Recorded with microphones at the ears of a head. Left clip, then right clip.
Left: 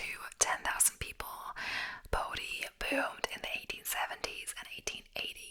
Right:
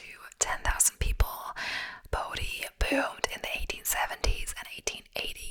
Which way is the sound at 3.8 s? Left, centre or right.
Right.